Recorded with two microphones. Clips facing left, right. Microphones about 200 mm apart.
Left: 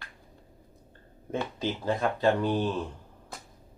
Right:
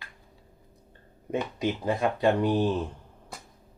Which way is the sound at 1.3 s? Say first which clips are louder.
Right 3 dB; 15° right (ahead or behind).